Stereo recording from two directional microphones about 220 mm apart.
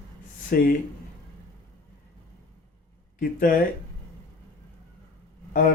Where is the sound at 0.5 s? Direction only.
40° left (ahead or behind).